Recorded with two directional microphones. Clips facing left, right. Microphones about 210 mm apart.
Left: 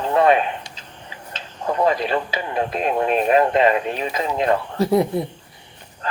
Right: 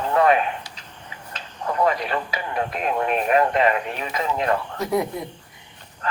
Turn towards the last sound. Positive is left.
turn(degrees=30)  # may be behind; listen again after turning